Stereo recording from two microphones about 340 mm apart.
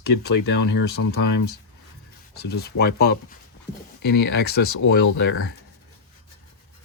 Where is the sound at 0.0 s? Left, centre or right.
Left.